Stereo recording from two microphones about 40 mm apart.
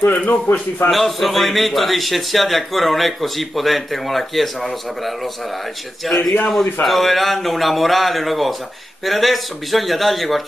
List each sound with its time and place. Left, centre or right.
0.1 s speech: left
0.8 s a man's voice: centre